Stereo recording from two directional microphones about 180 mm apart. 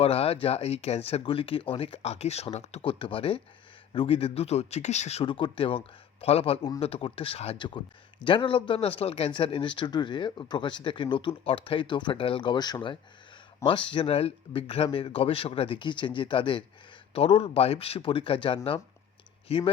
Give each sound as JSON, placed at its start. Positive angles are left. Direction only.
{"t": 0.0, "sound": "speech", "side_deg": 35}